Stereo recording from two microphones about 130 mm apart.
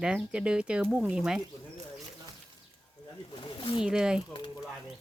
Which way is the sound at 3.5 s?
40° left (ahead or behind).